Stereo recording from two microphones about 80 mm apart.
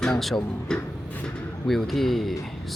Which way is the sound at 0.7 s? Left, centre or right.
Centre.